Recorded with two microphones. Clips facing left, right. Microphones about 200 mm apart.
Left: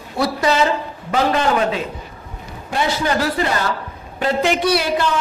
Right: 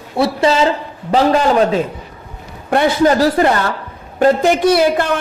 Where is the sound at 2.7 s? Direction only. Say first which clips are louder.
Right 7 dB; 60° right (ahead or behind).